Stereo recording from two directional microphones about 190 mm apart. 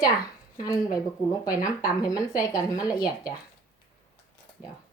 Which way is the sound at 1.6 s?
20° left (ahead or behind).